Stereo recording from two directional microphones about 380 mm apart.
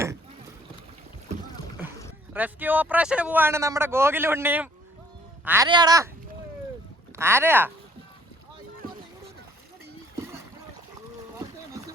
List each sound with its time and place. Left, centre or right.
2.3 s a man's voice: centre
7.2 s speech: centre